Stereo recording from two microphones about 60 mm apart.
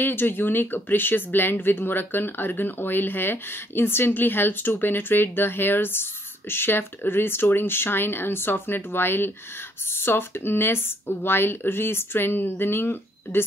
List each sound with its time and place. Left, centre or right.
0.0 s speech: left